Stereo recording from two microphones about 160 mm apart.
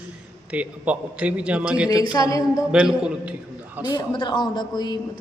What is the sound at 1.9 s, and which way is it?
Speech, 25° left (ahead or behind).